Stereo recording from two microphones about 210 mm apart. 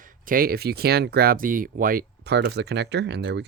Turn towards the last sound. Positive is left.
turn(degrees=-55)  # may be behind; listen again after turning